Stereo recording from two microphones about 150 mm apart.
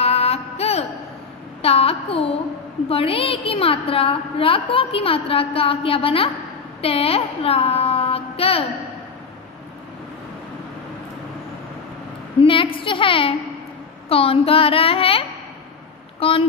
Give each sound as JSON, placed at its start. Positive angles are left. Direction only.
{"t": 0.0, "sound": "a sound", "side_deg": 45}
{"t": 1.6, "sound": "a woman's voice", "side_deg": 40}
{"t": 12.4, "sound": "a woman's voice", "side_deg": 35}